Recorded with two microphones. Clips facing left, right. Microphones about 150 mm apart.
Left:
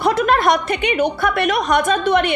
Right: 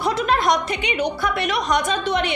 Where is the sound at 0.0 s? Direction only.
55° left (ahead or behind).